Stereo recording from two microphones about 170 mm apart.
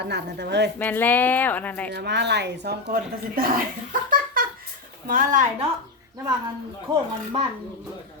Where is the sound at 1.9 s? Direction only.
90° right; by 3.4 s 70° right (ahead or behind).